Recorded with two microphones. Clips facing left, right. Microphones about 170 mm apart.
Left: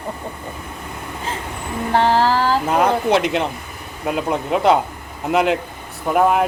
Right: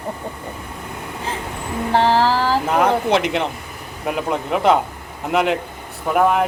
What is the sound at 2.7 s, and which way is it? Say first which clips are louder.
Speech: even; centre (ahead or behind).